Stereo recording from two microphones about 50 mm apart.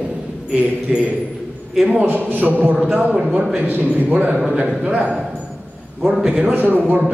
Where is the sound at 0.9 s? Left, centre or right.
Centre.